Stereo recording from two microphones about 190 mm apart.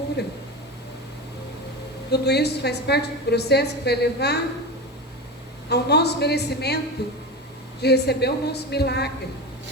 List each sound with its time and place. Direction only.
2.0 s a woman's voice: 60° left (ahead or behind)
5.6 s a woman's voice: 60° left (ahead or behind)